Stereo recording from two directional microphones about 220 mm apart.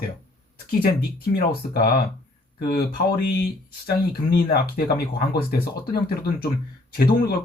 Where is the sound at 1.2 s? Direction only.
40° left (ahead or behind).